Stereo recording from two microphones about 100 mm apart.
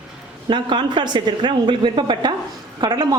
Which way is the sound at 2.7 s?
45° right (ahead or behind).